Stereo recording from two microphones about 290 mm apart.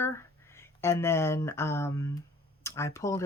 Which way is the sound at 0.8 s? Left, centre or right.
Centre.